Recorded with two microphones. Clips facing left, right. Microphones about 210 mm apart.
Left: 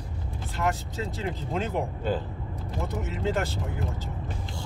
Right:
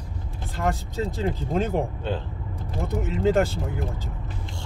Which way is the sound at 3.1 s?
50° right (ahead or behind).